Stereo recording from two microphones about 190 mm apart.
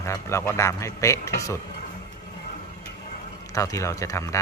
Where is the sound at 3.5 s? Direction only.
15° left (ahead or behind).